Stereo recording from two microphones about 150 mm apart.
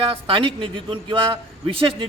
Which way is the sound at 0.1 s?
35° right (ahead or behind).